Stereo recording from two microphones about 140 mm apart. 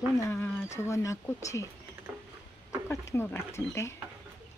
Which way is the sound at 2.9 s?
20° left (ahead or behind).